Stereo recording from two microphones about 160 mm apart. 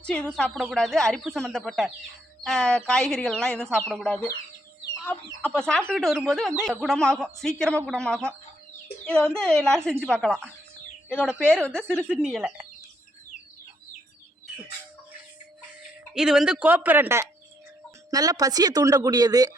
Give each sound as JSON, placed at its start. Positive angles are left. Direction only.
{"t": 0.0, "sound": "speech", "side_deg": 5}
{"t": 16.1, "sound": "speech", "side_deg": -5}